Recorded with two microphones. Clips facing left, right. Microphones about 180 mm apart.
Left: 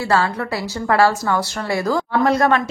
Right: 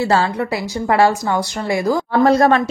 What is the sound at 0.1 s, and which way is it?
A woman's voice, 20° right (ahead or behind).